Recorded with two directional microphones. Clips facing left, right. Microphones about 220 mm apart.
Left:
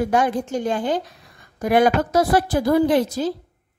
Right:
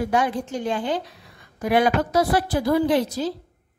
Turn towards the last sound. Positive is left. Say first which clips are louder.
# left 2 dB
turn(degrees=50)  # may be behind; listen again after turning